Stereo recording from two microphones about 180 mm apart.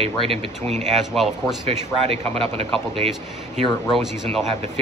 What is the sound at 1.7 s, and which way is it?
Speech, 35° right (ahead or behind).